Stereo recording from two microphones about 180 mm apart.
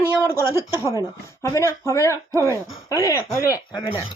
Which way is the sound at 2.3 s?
15° right (ahead or behind).